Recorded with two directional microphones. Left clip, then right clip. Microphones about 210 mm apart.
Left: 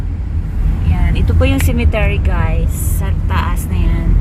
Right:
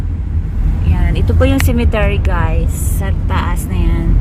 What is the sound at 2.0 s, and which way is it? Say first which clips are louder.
A woman's voice: right 2 dB; 15° right (ahead or behind).